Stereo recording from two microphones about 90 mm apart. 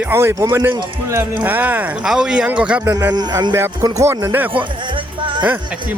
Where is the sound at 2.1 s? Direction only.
10° right (ahead or behind).